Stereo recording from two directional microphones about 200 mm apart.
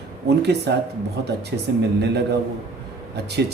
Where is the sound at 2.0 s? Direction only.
55° right (ahead or behind).